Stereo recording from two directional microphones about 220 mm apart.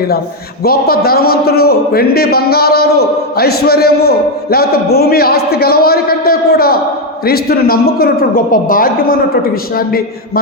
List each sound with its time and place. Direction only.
0.6 s speech: 45° left (ahead or behind)